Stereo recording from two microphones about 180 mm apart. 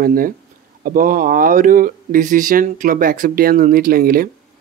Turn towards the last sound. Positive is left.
turn(degrees=-55)  # may be behind; listen again after turning